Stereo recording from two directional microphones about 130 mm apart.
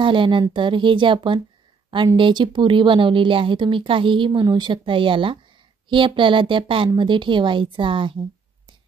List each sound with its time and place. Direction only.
0.0 s speech: 40° right (ahead or behind)